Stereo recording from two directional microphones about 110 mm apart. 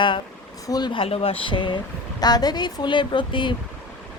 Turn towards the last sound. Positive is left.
turn(degrees=50)  # may be behind; listen again after turning